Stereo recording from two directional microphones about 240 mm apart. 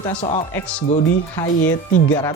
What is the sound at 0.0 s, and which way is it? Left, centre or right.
Speech, left.